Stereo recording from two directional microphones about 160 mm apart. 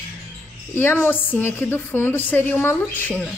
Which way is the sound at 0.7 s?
15° left (ahead or behind).